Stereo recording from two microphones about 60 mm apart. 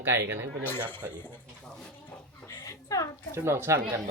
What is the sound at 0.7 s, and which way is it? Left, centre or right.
Speech, left.